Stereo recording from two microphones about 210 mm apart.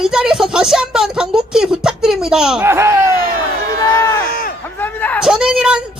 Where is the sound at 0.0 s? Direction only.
Centre (ahead or behind).